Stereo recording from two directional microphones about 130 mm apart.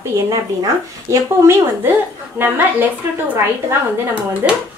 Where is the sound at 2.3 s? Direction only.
15° right (ahead or behind).